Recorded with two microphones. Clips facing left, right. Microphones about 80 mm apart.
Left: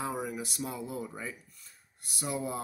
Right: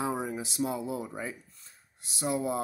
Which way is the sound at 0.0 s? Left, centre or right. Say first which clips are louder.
Right 3 dB; right.